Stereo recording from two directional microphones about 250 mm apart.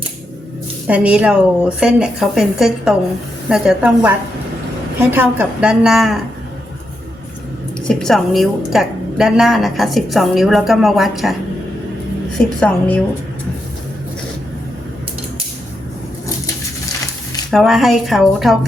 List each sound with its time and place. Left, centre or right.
0.9 s a woman's voice: centre
7.9 s a woman's voice: centre
12.5 s a woman's voice: centre
17.5 s a woman's voice: centre